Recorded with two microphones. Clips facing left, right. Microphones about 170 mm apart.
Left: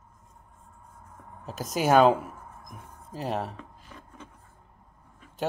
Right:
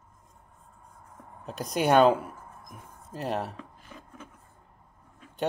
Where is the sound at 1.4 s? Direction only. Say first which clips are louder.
Even; centre (ahead or behind).